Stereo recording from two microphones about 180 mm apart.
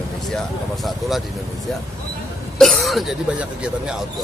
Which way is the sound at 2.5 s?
Centre (ahead or behind).